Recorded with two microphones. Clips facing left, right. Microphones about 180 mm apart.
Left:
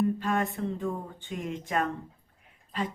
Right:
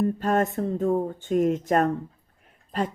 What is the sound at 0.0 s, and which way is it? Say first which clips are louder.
Speech: right 4 dB; 45° right (ahead or behind).